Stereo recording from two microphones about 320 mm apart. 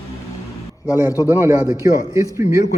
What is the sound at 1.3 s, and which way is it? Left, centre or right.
Speech, centre.